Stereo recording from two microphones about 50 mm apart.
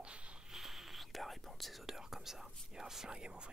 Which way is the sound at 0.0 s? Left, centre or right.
Right.